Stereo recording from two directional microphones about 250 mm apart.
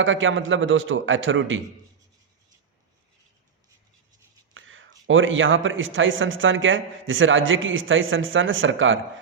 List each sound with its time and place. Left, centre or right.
0.0 s a man's voice: right
4.5 s a man's voice: right